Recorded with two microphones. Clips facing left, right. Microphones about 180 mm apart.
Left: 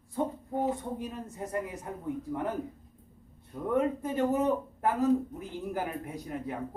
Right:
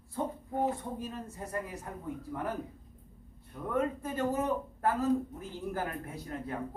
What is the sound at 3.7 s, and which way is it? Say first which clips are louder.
A man's voice: left 4 dB; 20° left (ahead or behind).